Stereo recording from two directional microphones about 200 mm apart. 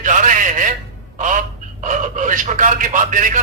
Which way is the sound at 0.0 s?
40° right (ahead or behind).